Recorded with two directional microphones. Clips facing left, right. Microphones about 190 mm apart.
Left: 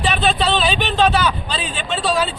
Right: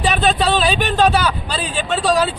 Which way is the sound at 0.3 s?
10° right (ahead or behind).